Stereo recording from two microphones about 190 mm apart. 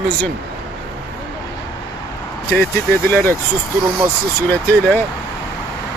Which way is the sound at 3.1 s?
10° left (ahead or behind).